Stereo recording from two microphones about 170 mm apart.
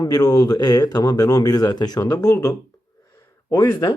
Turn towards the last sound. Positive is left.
turn(degrees=20)  # may be behind; listen again after turning